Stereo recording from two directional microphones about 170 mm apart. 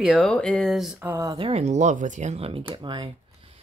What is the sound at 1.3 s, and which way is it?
Speech, 35° right (ahead or behind).